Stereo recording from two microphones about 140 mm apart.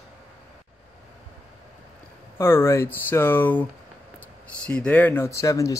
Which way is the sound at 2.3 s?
15° left (ahead or behind).